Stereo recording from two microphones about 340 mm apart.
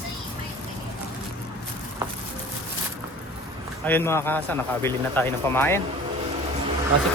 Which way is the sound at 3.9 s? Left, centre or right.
Centre.